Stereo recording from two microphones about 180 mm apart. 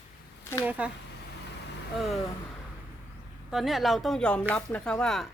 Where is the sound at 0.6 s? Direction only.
5° right (ahead or behind).